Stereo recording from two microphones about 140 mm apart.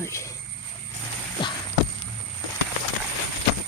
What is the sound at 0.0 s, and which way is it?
Vehicle, 20° left (ahead or behind).